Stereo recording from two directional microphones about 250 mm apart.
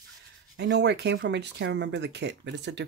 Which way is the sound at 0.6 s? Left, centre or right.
Right.